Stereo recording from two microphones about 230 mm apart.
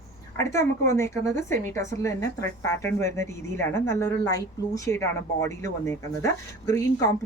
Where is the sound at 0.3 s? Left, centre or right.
Centre.